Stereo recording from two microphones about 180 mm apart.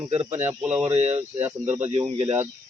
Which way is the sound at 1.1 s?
10° right (ahead or behind).